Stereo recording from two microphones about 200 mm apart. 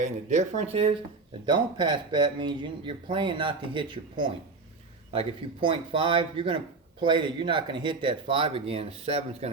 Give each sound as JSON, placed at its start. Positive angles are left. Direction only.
{"t": 0.0, "sound": "speech", "side_deg": -40}